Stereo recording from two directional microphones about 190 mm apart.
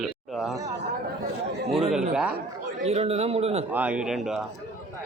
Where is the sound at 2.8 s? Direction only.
35° right (ahead or behind).